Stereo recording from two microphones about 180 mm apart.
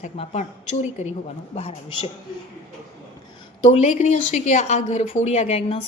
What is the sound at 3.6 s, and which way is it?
Speech, 35° left (ahead or behind).